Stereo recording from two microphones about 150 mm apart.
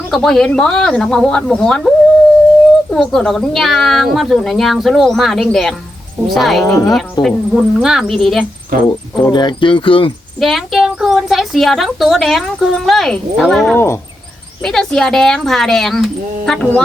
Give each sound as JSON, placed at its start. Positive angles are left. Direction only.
{"t": 0.1, "sound": "a woman's voice", "side_deg": 0}
{"t": 2.9, "sound": "a woman's voice", "side_deg": 5}
{"t": 8.7, "sound": "speech", "side_deg": -75}
{"t": 9.2, "sound": "speech", "side_deg": 30}
{"t": 10.4, "sound": "a woman's voice", "side_deg": 0}
{"t": 13.7, "sound": "speech", "side_deg": 15}
{"t": 14.6, "sound": "a woman's voice", "side_deg": 5}